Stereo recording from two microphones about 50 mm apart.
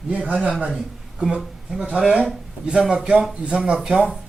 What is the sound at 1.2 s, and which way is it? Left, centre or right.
A man's voice, centre.